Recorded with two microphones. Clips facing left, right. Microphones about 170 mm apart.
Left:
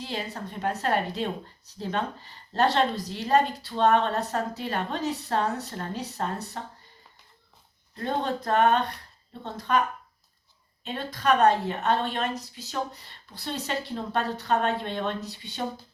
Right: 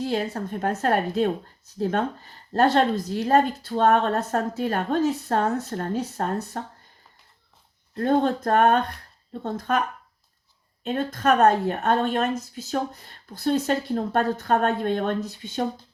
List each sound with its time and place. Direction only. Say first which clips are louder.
0.0 s a woman's voice: right 8 dB; 50° right (ahead or behind)
7.9 s a woman's voice: right 7 dB; 50° right (ahead or behind)
10.8 s a woman's voice: right 4 dB; 45° right (ahead or behind)